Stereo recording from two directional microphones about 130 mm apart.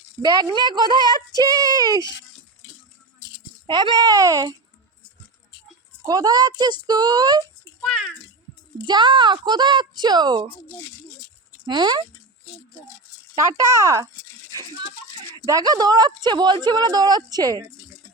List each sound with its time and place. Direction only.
0.2 s speech: 30° right (ahead or behind)
3.7 s speech: 35° right (ahead or behind)
6.1 s speech: 30° right (ahead or behind)
7.8 s a sound: centre (ahead or behind)
8.9 s speech: 35° right (ahead or behind)
11.6 s speech: 35° right (ahead or behind)
13.3 s speech: 25° right (ahead or behind)
15.4 s speech: 30° right (ahead or behind)